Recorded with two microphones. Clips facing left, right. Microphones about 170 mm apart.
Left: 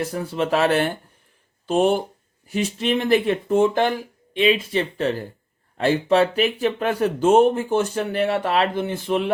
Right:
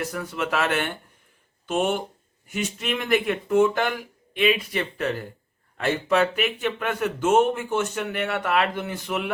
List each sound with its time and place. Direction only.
0.0 s speech: 30° left (ahead or behind)